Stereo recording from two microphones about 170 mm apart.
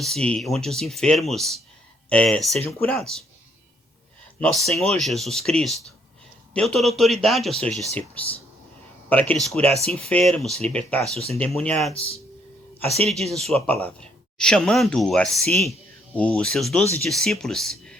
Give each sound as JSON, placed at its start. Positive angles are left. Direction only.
{"t": 0.0, "sound": "speech", "side_deg": 5}
{"t": 4.4, "sound": "speech", "side_deg": 5}
{"t": 13.3, "sound": "speech", "side_deg": 0}